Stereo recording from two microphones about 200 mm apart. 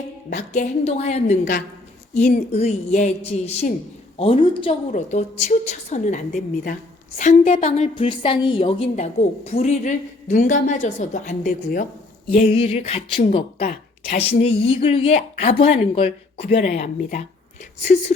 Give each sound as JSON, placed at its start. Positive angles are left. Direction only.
{"t": 0.3, "sound": "a woman's voice", "side_deg": 35}
{"t": 4.9, "sound": "a woman's voice", "side_deg": 35}
{"t": 13.6, "sound": "speech", "side_deg": 40}
{"t": 14.3, "sound": "a woman's voice", "side_deg": 25}